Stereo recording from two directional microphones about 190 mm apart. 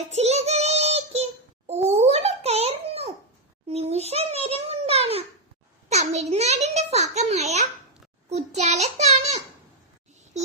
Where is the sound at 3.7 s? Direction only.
35° right (ahead or behind).